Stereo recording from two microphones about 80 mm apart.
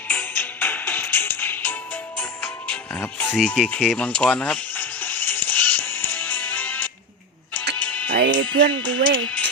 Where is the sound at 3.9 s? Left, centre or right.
Centre.